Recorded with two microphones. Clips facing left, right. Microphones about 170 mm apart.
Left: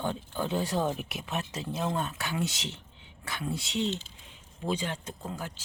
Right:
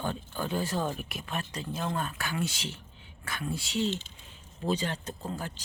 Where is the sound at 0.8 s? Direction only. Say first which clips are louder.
Left 2 dB; 20° left (ahead or behind).